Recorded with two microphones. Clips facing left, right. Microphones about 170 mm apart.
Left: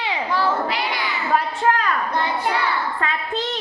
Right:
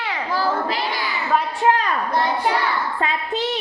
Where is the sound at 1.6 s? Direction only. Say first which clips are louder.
Right 4 dB; 20° right (ahead or behind).